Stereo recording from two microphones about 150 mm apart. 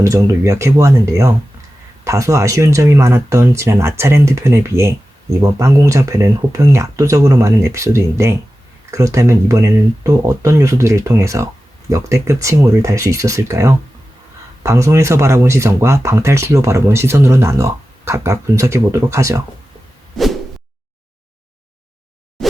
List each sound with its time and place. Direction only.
0.0 s speech: 20° right (ahead or behind)
20.1 s whoosh: centre (ahead or behind)
22.4 s a sound: centre (ahead or behind)